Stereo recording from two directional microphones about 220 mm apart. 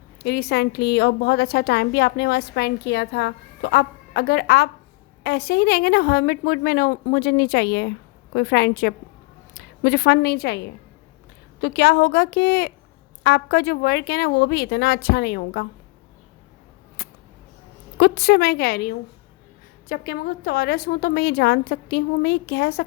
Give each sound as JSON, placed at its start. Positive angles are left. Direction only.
{"t": 0.2, "sound": "a woman's voice", "side_deg": 45}
{"t": 17.0, "sound": "a sound", "side_deg": 45}
{"t": 17.9, "sound": "a woman's voice", "side_deg": 50}